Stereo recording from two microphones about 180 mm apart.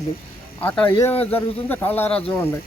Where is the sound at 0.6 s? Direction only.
10° left (ahead or behind).